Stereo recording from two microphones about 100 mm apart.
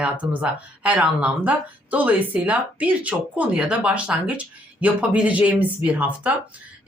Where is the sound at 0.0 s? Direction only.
15° right (ahead or behind).